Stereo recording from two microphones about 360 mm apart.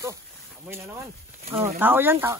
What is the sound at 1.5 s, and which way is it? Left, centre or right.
Speech, centre.